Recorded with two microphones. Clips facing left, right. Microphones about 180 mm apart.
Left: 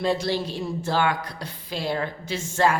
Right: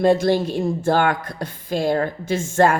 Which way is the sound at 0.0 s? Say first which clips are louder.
Right 8 dB; 50° right (ahead or behind).